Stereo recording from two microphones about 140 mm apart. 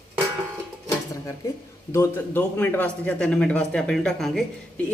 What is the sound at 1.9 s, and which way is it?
A man's voice, 15° left (ahead or behind).